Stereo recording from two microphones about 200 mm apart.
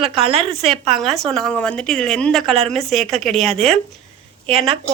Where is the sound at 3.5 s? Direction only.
30° right (ahead or behind).